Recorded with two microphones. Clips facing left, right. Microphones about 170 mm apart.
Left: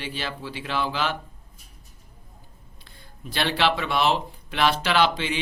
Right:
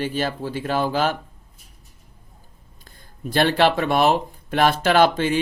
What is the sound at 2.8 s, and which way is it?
Speech, 45° right (ahead or behind).